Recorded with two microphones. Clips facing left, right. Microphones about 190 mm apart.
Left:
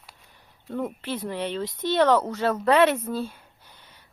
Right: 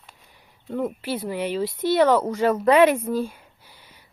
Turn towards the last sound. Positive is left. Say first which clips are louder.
# right 1 dB
turn(degrees=-10)  # may be behind; listen again after turning